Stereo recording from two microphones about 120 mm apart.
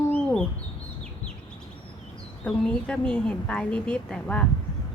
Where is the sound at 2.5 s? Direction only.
5° left (ahead or behind).